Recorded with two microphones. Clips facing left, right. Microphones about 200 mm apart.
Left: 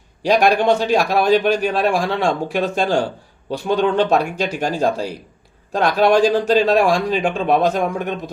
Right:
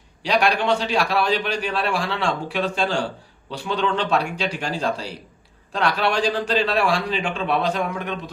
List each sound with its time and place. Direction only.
0.2 s a man's voice: 45° left (ahead or behind)